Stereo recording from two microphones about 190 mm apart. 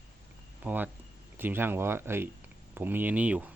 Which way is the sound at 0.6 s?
10° right (ahead or behind).